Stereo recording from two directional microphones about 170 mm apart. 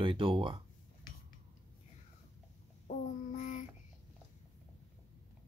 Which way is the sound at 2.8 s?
45° left (ahead or behind).